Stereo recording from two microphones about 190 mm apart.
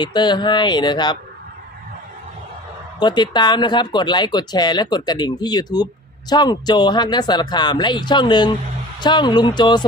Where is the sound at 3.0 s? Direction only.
25° left (ahead or behind).